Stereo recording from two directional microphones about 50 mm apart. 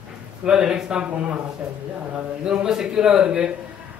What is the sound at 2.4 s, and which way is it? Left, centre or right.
A man's voice, centre.